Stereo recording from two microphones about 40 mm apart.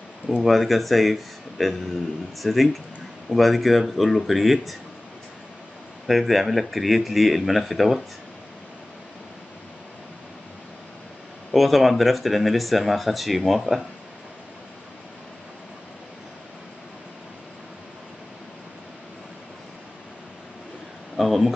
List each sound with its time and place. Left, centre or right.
0.4 s speech: centre
6.0 s speech: centre
11.5 s speech: centre
21.2 s a sound: centre